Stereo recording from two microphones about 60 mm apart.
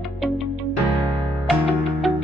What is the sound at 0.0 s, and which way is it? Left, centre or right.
Music, centre.